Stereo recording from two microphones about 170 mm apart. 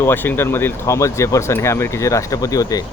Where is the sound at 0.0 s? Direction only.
10° left (ahead or behind).